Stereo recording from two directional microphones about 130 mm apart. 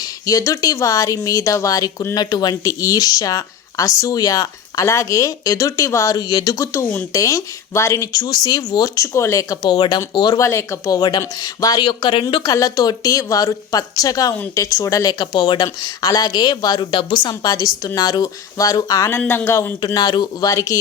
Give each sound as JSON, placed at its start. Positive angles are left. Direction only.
{"t": 0.3, "sound": "speech", "side_deg": 25}
{"t": 19.2, "sound": "speech", "side_deg": 10}
{"t": 19.5, "sound": "speech", "side_deg": 20}
{"t": 19.8, "sound": "speech", "side_deg": 30}